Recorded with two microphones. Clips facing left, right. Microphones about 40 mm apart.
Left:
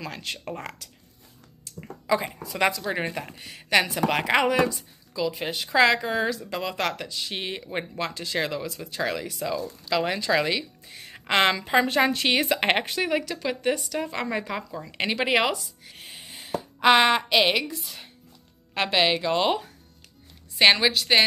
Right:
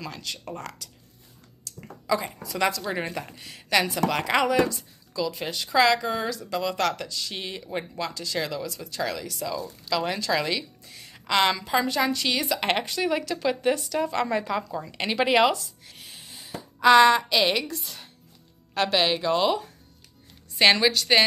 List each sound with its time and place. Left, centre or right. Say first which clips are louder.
0.1 s a woman's voice: left 2 dB; left
1.8 s speech: left 1 dB; centre
11.2 s a woman's voice: left 1 dB; left
13.0 s speech: right 1 dB; centre
15.8 s a sound: left 2 dB; centre
16.3 s a woman's voice: left 6 dB; left; by 17.7 s centre
17.7 s speech: even; centre
18.8 s speech: left 1 dB; centre
20.5 s speech: left 1 dB; centre